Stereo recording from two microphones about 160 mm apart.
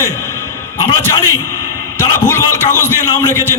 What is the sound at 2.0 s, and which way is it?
A man's voice, 15° left (ahead or behind).